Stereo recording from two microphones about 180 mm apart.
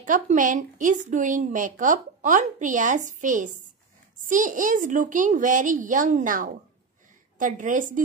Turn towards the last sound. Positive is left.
turn(degrees=-45)  # may be behind; listen again after turning